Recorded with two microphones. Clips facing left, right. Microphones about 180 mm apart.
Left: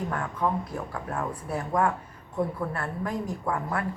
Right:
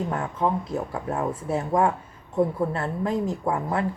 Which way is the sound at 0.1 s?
25° right (ahead or behind).